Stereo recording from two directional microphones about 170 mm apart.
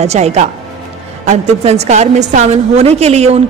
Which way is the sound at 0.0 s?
40° right (ahead or behind).